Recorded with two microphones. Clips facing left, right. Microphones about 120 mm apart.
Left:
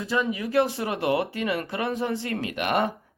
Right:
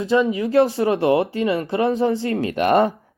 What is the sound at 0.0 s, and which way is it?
Speech, 25° right (ahead or behind).